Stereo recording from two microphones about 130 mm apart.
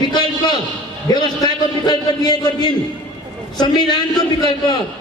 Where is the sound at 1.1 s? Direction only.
30° left (ahead or behind).